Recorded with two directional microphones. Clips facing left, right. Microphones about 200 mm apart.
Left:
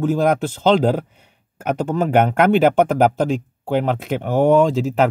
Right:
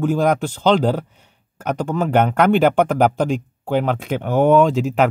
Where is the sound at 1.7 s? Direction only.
5° left (ahead or behind).